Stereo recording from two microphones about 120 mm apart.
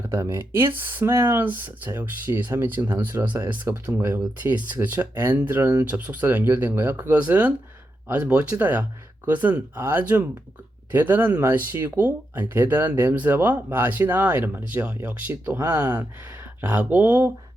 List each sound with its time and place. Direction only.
0.1 s speech: 25° right (ahead or behind)
15.5 s speech: 30° right (ahead or behind)
16.2 s speech: 15° right (ahead or behind)